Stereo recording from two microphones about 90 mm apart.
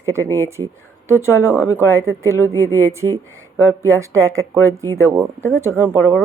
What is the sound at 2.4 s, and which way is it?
Speech, 35° left (ahead or behind).